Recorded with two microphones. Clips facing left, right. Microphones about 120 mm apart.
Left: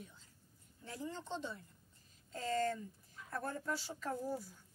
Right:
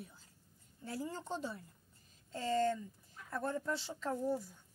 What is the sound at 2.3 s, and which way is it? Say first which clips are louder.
Speech: right 3 dB; 30° right (ahead or behind).